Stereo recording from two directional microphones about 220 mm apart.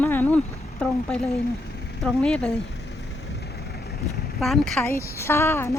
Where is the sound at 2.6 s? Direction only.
60° left (ahead or behind).